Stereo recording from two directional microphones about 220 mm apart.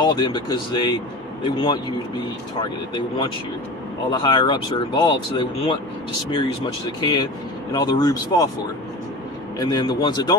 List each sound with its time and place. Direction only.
0.0 s a man's voice: 20° left (ahead or behind)
4.1 s a man's voice: 20° left (ahead or behind)
9.6 s a man's voice: 20° left (ahead or behind)